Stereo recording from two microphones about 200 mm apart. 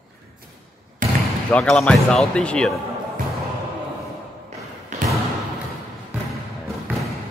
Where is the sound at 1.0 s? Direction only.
45° right (ahead or behind).